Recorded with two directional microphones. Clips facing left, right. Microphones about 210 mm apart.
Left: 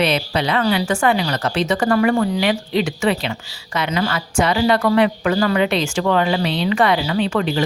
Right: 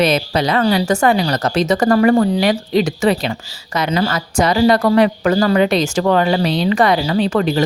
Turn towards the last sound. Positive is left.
turn(degrees=-40)  # may be behind; listen again after turning